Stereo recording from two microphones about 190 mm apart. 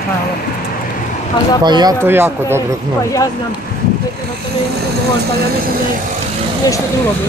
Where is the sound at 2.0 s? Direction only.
10° right (ahead or behind).